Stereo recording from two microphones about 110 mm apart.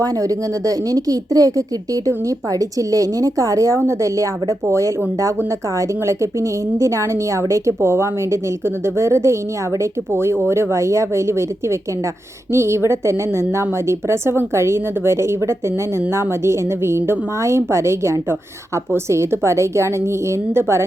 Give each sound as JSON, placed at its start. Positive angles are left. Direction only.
{"t": 0.0, "sound": "a woman's voice", "side_deg": -35}